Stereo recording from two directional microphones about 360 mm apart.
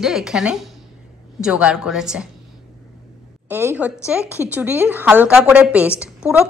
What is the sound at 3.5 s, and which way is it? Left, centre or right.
A woman's voice, centre.